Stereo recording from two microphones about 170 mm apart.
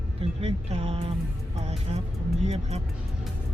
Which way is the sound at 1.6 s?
40° right (ahead or behind).